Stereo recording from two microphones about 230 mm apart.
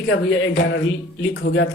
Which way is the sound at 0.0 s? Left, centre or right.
Left.